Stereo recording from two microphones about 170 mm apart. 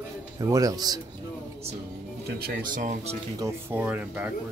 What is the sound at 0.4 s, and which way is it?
Speech, 20° right (ahead or behind).